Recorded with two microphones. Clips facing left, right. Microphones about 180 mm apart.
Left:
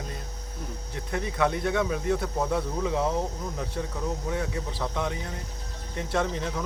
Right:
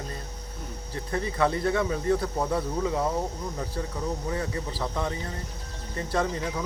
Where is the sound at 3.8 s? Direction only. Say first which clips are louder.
Even; 5° left (ahead or behind).